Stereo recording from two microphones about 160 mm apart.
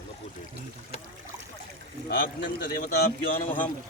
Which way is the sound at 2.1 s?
75° left (ahead or behind).